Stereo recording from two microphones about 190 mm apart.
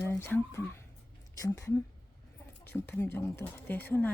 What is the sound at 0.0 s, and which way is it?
Speech, 10° left (ahead or behind).